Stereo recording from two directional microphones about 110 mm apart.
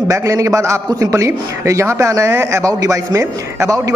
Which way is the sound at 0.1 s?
30° right (ahead or behind).